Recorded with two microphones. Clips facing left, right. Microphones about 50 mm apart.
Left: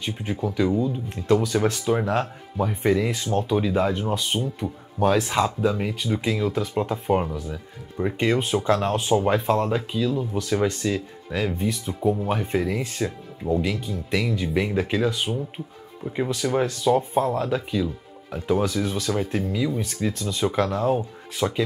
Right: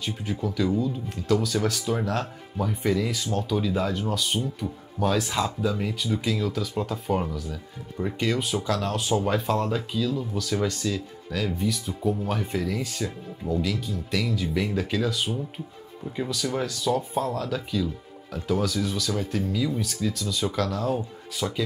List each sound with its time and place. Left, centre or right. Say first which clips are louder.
0.0 s speech: left 2 dB; left
19.8 s speech: left 2 dB; left